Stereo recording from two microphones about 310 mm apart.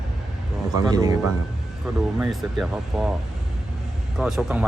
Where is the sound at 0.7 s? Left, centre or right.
Centre.